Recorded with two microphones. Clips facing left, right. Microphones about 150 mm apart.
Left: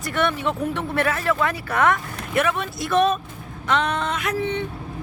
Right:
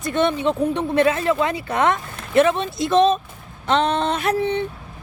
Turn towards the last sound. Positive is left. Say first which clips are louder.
# right 4 dB
turn(degrees=-35)  # may be behind; listen again after turning